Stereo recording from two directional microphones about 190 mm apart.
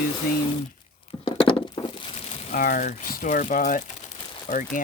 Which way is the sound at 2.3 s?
45° left (ahead or behind).